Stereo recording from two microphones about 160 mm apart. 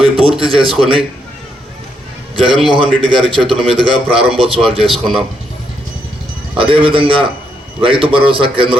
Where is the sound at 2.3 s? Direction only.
35° right (ahead or behind).